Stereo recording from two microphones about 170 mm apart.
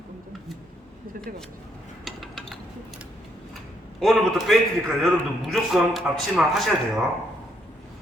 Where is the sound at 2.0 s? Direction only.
Centre (ahead or behind).